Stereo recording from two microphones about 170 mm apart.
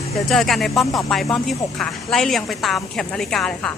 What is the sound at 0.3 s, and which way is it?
A woman's voice, centre (ahead or behind).